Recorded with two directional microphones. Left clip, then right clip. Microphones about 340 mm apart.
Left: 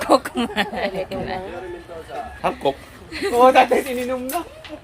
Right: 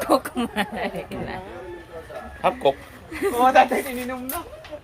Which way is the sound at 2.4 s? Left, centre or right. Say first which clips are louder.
Right 2 dB; centre.